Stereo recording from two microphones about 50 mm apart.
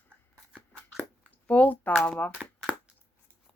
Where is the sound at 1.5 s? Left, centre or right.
Left.